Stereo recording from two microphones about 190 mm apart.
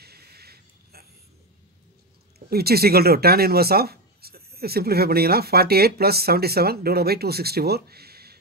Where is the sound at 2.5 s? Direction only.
55° right (ahead or behind).